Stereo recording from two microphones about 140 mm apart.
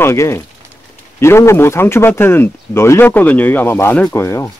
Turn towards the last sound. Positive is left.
turn(degrees=20)  # may be behind; listen again after turning